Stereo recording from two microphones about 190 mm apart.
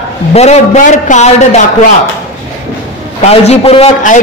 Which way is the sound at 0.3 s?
35° left (ahead or behind).